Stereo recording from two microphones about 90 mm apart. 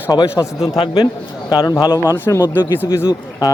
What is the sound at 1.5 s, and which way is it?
Speech, 45° left (ahead or behind).